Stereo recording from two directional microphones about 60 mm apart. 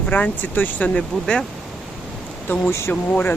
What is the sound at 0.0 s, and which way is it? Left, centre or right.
Speech, left.